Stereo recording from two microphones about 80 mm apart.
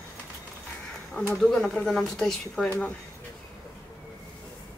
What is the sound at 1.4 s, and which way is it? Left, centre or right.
Speech, centre.